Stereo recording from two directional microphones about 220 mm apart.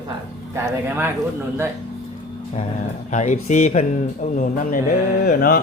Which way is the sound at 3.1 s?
35° left (ahead or behind).